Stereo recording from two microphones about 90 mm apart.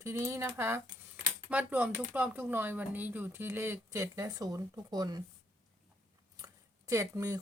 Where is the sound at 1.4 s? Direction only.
15° right (ahead or behind); by 5.2 s 45° right (ahead or behind).